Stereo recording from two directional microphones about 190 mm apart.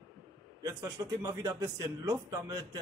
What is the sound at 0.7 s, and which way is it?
A man's voice, 20° right (ahead or behind).